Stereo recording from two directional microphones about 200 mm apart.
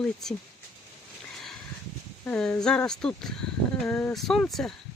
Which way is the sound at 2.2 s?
5° left (ahead or behind).